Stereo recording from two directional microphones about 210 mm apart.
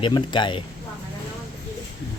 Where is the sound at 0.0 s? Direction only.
20° left (ahead or behind).